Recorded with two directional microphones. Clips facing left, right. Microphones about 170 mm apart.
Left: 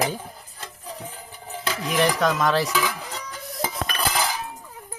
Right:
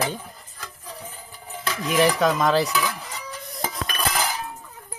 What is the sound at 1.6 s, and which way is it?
Stir, 25° left (ahead or behind).